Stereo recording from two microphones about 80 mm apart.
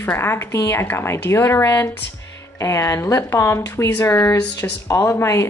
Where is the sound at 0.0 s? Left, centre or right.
Left.